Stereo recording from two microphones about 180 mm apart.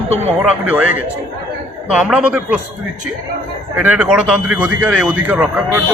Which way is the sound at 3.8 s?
10° right (ahead or behind).